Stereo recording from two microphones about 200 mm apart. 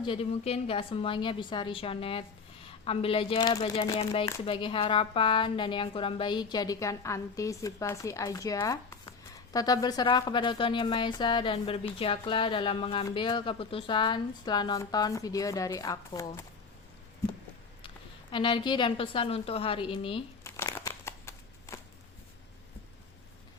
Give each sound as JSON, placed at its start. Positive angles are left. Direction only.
{"t": 0.0, "sound": "speech", "side_deg": 25}
{"t": 17.8, "sound": "a woman's voice", "side_deg": 25}
{"t": 20.4, "sound": "a sound", "side_deg": 15}